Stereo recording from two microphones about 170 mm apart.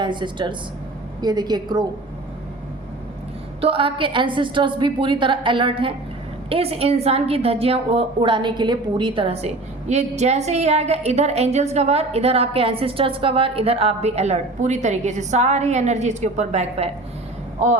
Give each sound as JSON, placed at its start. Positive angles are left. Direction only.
{"t": 0.0, "sound": "a woman's voice", "side_deg": -25}
{"t": 3.6, "sound": "a woman's voice", "side_deg": -30}